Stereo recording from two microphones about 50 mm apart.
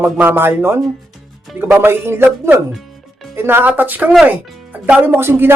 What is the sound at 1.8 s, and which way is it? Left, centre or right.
Speech, right.